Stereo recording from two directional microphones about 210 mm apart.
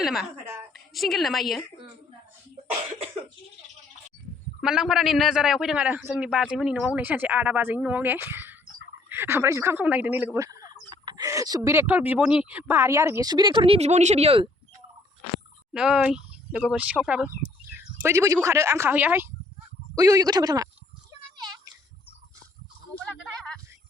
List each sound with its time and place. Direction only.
0.0 s a sound: centre (ahead or behind)
0.7 s a woman's voice: centre (ahead or behind)
4.6 s a man's voice: 5° right (ahead or behind); by 14.5 s 25° right (ahead or behind)
15.7 s a man's voice: 5° right (ahead or behind)
17.7 s bird: 10° right (ahead or behind)
18.4 s speech: 15° right (ahead or behind)